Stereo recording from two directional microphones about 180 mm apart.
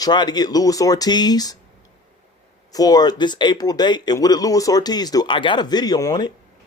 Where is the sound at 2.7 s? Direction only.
20° left (ahead or behind).